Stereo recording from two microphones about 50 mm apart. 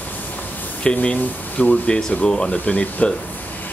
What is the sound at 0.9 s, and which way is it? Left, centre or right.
Speech, left.